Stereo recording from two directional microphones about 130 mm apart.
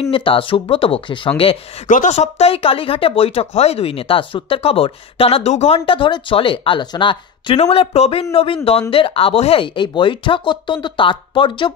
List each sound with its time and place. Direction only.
0.1 s speech: 40° left (ahead or behind)
1.9 s a woman's voice: 85° left
2.1 s speech: 55° left (ahead or behind)
5.9 s speech: 40° left (ahead or behind)
7.5 s speech: 50° left (ahead or behind)